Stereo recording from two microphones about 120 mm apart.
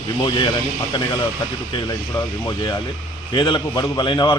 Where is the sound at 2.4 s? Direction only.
35° left (ahead or behind).